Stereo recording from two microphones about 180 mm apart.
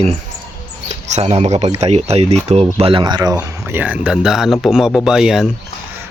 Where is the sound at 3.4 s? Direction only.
10° right (ahead or behind).